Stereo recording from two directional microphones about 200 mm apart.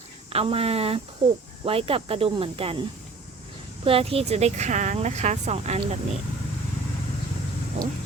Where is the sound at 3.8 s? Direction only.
30° right (ahead or behind).